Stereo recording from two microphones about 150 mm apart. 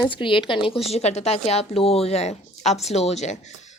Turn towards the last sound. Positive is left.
turn(degrees=45)  # may be behind; listen again after turning